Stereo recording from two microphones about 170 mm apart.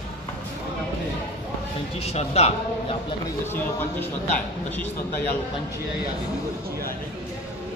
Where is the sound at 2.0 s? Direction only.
40° left (ahead or behind).